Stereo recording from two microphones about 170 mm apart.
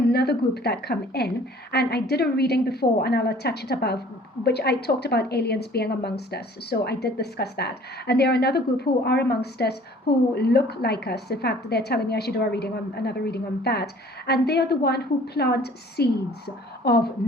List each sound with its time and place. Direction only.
0.1 s a woman's voice: 70° left (ahead or behind)